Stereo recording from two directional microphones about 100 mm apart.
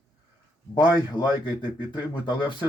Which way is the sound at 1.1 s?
50° left (ahead or behind).